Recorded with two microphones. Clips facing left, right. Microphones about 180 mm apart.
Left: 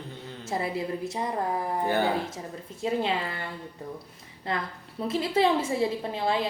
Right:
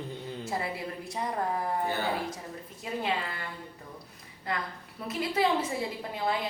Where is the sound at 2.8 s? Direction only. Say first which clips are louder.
Left 8 dB; 25° left (ahead or behind).